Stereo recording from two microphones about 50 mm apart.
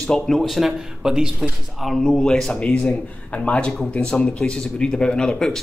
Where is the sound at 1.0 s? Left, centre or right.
Centre.